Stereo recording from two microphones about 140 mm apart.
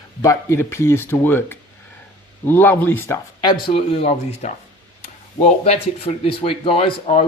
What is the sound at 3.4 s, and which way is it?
Speech, 45° left (ahead or behind).